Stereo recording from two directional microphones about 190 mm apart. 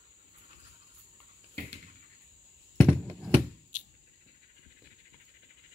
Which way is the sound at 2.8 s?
5° left (ahead or behind).